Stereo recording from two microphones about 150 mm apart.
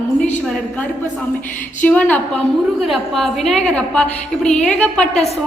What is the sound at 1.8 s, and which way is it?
A woman's voice, 10° left (ahead or behind).